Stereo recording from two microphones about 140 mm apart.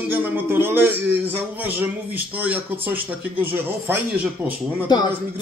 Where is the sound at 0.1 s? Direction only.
15° right (ahead or behind).